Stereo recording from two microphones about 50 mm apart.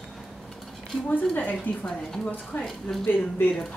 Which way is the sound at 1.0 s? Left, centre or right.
Left.